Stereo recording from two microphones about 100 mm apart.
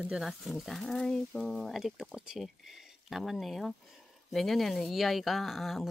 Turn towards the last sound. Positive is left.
turn(degrees=0)  # may be behind; listen again after turning